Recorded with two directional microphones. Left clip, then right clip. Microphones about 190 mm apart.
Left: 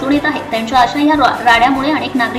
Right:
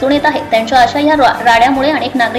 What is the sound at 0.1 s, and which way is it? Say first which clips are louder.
A woman's voice: right 4 dB; 15° right (ahead or behind).